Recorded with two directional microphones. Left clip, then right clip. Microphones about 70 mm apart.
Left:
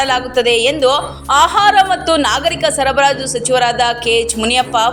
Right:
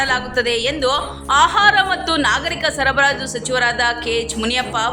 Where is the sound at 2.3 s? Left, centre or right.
Left.